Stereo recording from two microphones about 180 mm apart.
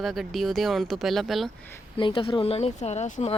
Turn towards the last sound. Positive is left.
turn(degrees=40)  # may be behind; listen again after turning